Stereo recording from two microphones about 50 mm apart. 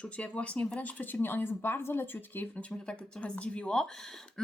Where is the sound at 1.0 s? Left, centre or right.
Left.